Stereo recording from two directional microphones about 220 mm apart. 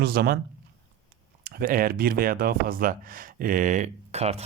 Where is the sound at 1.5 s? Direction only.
40° right (ahead or behind).